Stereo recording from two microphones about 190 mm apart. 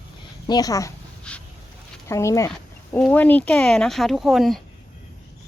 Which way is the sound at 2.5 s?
5° left (ahead or behind).